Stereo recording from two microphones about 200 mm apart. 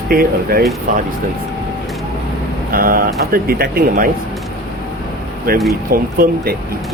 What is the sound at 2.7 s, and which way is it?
Speech, 45° right (ahead or behind).